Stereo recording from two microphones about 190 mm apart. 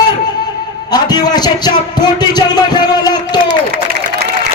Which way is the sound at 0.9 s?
20° left (ahead or behind).